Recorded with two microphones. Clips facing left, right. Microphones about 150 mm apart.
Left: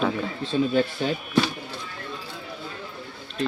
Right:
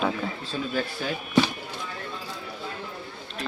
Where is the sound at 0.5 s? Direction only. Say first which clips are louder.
Left 10 dB; 30° left (ahead or behind).